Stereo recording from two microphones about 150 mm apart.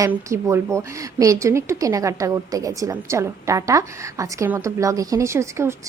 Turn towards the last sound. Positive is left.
turn(degrees=-20)  # may be behind; listen again after turning